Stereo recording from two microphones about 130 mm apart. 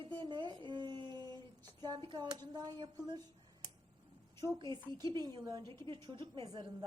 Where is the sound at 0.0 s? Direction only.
35° right (ahead or behind).